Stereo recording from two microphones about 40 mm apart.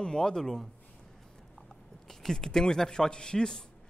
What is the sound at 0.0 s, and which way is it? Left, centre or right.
Speech, centre.